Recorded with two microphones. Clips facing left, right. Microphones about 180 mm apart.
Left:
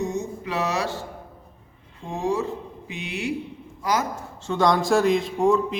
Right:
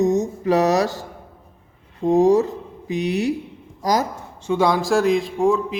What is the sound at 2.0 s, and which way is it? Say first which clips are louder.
Speech: right 11 dB; 40° right (ahead or behind).